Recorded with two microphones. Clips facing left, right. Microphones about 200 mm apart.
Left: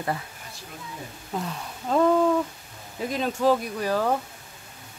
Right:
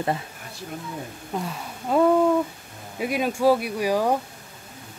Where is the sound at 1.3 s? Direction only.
5° right (ahead or behind).